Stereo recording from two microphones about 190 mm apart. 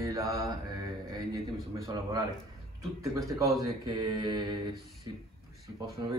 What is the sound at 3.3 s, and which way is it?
Speech, 15° right (ahead or behind).